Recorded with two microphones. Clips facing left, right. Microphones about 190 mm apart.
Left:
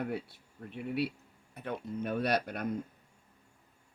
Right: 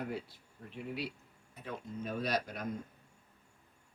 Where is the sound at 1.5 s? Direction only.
65° left (ahead or behind).